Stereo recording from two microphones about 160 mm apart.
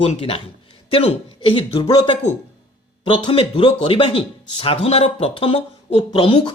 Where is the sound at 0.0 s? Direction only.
35° left (ahead or behind).